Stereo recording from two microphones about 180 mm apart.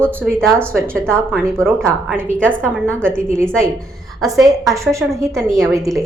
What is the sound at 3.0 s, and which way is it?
Speech, 15° right (ahead or behind).